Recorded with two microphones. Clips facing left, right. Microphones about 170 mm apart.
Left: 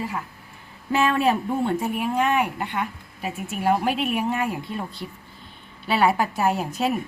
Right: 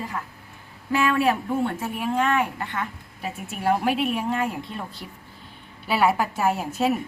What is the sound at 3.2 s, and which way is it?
Speech, 5° left (ahead or behind).